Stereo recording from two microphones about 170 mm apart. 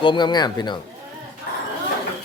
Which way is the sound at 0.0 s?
25° left (ahead or behind).